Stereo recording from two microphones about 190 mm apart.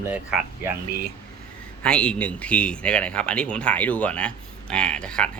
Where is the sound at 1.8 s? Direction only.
5° left (ahead or behind).